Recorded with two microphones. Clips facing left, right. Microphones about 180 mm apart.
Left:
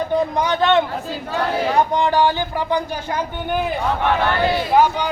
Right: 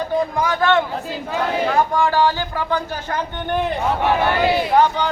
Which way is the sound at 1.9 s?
20° left (ahead or behind).